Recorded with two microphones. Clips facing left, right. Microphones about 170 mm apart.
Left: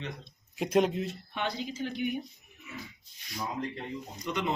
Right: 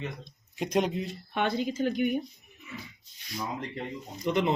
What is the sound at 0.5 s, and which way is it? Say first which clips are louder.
Speech: left 1 dB; centre (ahead or behind).